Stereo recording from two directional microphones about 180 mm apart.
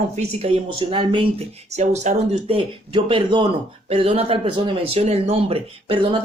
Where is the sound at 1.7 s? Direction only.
40° right (ahead or behind).